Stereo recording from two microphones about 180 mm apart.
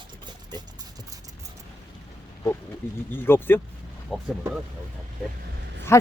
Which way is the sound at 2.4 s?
15° left (ahead or behind).